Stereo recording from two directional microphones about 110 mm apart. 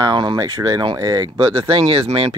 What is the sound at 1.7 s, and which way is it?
Speech, 60° right (ahead or behind).